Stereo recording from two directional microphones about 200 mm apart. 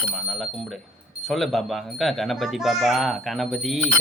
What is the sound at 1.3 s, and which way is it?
Speech, centre (ahead or behind).